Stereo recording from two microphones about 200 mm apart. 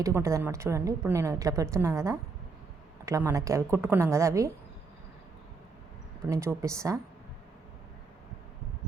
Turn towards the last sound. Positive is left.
turn(degrees=-15)  # may be behind; listen again after turning